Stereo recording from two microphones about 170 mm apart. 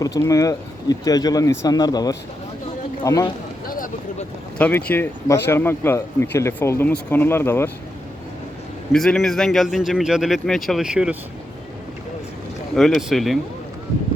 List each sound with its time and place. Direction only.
0.0 s speech: 20° left (ahead or behind)
3.7 s a sound: 55° left (ahead or behind)
4.5 s speech: 10° left (ahead or behind)
8.9 s a man's voice: centre (ahead or behind)
12.7 s a man's voice: centre (ahead or behind)